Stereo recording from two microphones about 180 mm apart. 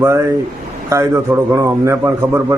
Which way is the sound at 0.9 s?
15° right (ahead or behind).